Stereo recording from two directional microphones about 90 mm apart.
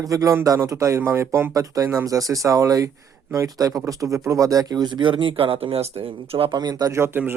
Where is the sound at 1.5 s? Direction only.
40° right (ahead or behind); by 6.5 s 90° right.